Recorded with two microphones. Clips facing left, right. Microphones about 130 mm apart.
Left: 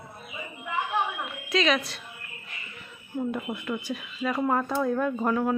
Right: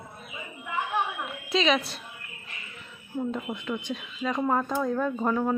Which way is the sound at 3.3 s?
5° left (ahead or behind).